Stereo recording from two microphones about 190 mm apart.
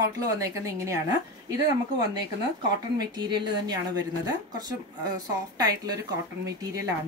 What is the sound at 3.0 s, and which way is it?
Speech, 20° right (ahead or behind).